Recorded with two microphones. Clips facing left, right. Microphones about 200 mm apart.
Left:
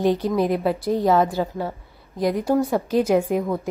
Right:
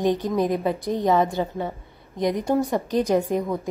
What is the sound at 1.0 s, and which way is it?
Speech, centre (ahead or behind).